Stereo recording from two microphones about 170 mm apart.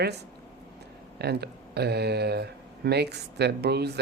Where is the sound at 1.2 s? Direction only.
70° right (ahead or behind).